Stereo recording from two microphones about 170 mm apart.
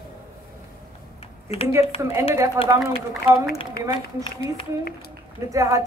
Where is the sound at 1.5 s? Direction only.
35° left (ahead or behind).